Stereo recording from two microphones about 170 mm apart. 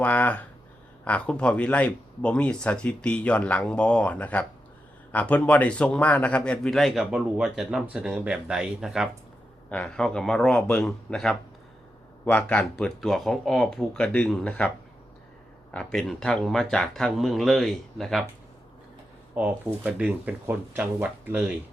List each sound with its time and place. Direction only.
0.0 s a man's voice: 10° left (ahead or behind)
15.7 s a man's voice: 5° left (ahead or behind)
19.4 s speech: 10° right (ahead or behind)